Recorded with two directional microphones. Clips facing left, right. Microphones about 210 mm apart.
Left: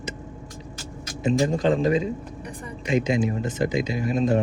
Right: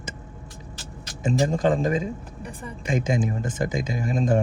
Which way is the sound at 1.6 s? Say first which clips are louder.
Left 1 dB; 50° right (ahead or behind).